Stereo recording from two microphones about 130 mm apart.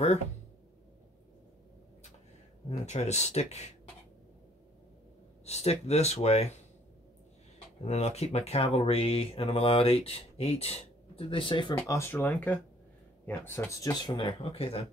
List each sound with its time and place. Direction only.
2.9 s speech: 60° left (ahead or behind)
5.4 s speech: 55° left (ahead or behind)
7.5 s speech: 55° left (ahead or behind)
11.8 s speech: 20° left (ahead or behind)
14.1 s speech: 45° left (ahead or behind)